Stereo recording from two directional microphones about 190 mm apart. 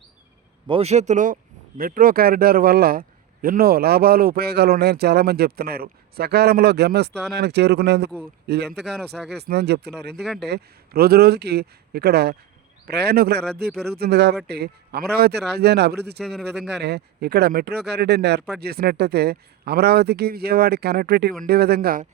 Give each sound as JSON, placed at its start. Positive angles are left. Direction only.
{"t": 0.7, "sound": "a man's voice", "side_deg": -35}
{"t": 10.2, "sound": "speech", "side_deg": 0}
{"t": 10.4, "sound": "speech", "side_deg": -55}